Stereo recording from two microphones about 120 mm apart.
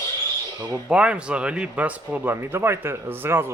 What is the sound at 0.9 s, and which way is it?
Speech, 10° right (ahead or behind).